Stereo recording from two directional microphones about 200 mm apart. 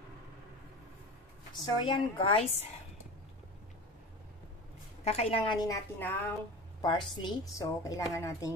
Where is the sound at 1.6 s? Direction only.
25° left (ahead or behind).